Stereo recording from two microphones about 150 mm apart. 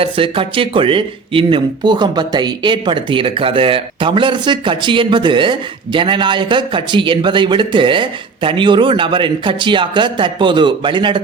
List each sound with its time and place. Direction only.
0.0 s speech: 35° right (ahead or behind)